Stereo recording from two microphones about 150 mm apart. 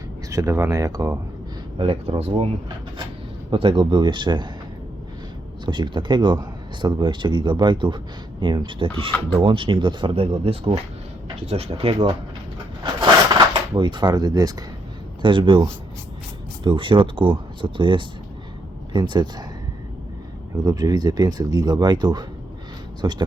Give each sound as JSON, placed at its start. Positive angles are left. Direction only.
{"t": 0.3, "sound": "speech", "side_deg": -20}
{"t": 1.8, "sound": "speech", "side_deg": -40}
{"t": 5.6, "sound": "speech", "side_deg": -30}
{"t": 13.5, "sound": "speech", "side_deg": -30}
{"t": 16.6, "sound": "speech", "side_deg": -35}
{"t": 20.7, "sound": "speech", "side_deg": -25}